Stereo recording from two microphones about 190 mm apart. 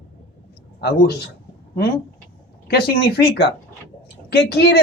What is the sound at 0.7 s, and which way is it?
Speech, 55° left (ahead or behind).